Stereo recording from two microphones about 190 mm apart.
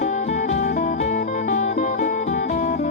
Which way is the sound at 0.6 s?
50° left (ahead or behind).